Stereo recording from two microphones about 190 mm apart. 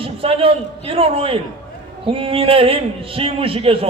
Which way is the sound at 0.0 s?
30° right (ahead or behind).